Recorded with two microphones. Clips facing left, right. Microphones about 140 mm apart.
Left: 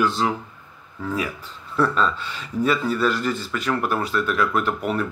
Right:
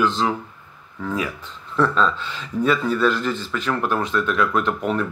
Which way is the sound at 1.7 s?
10° left (ahead or behind).